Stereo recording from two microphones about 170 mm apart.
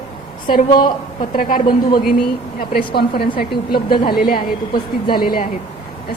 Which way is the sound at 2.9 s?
70° left (ahead or behind).